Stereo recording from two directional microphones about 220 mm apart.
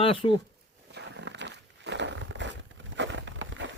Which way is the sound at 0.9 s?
55° right (ahead or behind).